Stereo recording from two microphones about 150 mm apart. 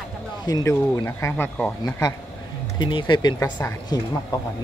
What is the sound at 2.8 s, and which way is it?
Speech, 30° left (ahead or behind).